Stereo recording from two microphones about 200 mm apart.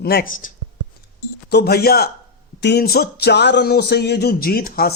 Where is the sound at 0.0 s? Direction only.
50° left (ahead or behind).